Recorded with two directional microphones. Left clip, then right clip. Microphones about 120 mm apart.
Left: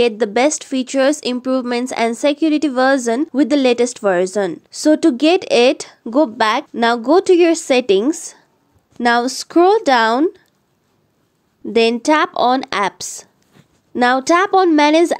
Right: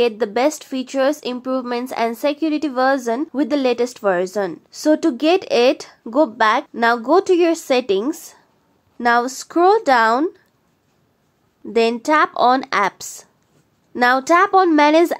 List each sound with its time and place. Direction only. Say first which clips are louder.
0.0 s speech: left 3 dB; 30° left (ahead or behind)
6.7 s speech: left 2 dB; 35° left (ahead or behind)
11.7 s speech: left 2 dB; 35° left (ahead or behind)